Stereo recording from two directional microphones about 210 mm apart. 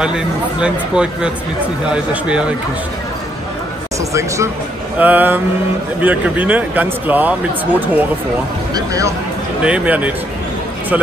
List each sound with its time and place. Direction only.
0.0 s speech: 5° right (ahead or behind)
4.1 s speech: 15° right (ahead or behind)